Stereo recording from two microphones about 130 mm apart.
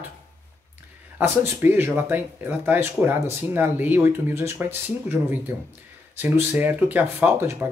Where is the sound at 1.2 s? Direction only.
15° right (ahead or behind).